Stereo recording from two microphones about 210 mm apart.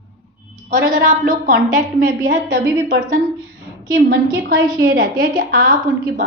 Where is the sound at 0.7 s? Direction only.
40° right (ahead or behind).